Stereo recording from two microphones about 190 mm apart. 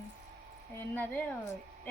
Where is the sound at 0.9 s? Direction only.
10° left (ahead or behind).